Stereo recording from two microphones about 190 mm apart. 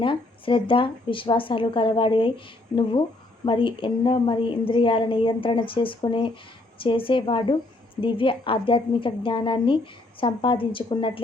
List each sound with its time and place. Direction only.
0.0 s speech: 25° left (ahead or behind)